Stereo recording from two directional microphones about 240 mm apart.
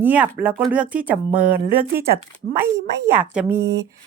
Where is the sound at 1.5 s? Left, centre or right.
Right.